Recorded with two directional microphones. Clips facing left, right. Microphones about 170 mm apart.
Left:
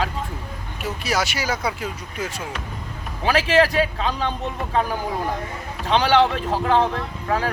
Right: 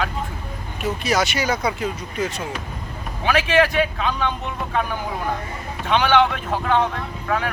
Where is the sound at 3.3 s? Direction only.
35° left (ahead or behind).